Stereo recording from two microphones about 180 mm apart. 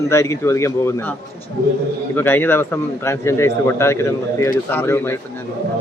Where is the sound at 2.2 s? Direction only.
10° left (ahead or behind).